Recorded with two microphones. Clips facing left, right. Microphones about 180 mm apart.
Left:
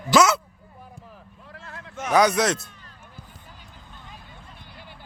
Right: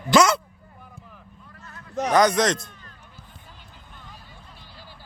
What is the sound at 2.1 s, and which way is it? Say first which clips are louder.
Speech: even; 10° left (ahead or behind).